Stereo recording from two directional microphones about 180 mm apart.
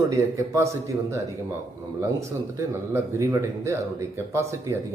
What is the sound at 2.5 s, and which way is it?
Speech, 15° right (ahead or behind).